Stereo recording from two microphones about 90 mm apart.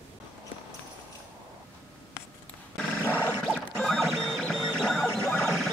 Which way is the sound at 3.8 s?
Centre (ahead or behind).